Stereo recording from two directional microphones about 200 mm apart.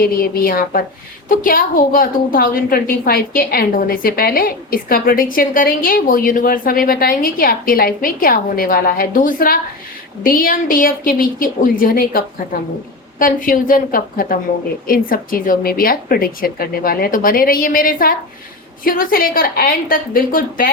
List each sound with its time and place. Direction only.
0.0 s a woman's voice: 45° left (ahead or behind)